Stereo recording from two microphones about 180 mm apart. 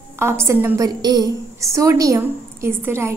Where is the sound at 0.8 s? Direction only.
20° right (ahead or behind).